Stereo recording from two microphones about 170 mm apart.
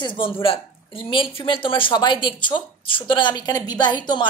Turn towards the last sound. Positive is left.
turn(degrees=25)  # may be behind; listen again after turning